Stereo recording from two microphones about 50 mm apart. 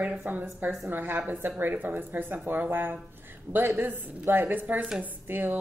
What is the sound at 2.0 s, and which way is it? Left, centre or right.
Speech, right.